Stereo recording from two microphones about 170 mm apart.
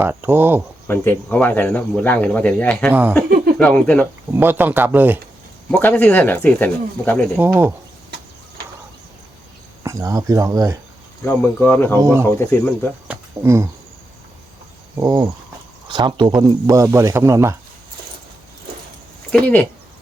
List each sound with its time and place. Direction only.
0.0 s speech: 10° right (ahead or behind)
0.9 s speech: 10° left (ahead or behind)
3.2 s a sound: 60° right (ahead or behind)
3.6 s speech: 10° left (ahead or behind)
4.3 s speech: 10° right (ahead or behind)
5.7 s speech: 10° left (ahead or behind)
7.3 s speech: 10° right (ahead or behind)
9.8 s speech: 20° right (ahead or behind)
11.3 s speech: 15° left (ahead or behind)
11.9 s speech: 15° right (ahead or behind)
12.4 s speech: 15° left (ahead or behind)
13.1 s cricket: 15° right (ahead or behind)
14.9 s speech: 25° right (ahead or behind)
19.3 s speech: 10° left (ahead or behind)